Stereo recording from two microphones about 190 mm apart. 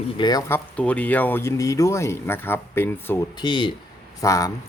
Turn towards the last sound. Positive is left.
turn(degrees=15)  # may be behind; listen again after turning